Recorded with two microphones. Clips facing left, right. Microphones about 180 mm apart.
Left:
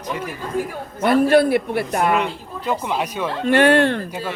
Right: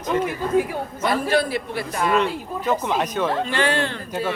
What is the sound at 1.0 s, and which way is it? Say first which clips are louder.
A man's voice: left 7 dB; 55° left (ahead or behind).